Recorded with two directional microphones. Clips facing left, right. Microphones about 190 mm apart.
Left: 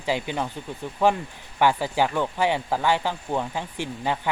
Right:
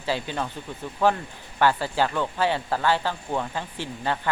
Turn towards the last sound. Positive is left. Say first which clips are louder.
# left 1 dB
turn(degrees=15)  # may be behind; listen again after turning